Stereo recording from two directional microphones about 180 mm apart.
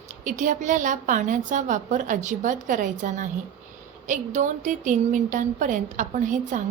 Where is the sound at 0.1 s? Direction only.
45° right (ahead or behind).